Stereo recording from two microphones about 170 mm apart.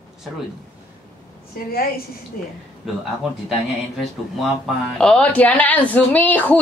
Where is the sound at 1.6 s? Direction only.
55° left (ahead or behind).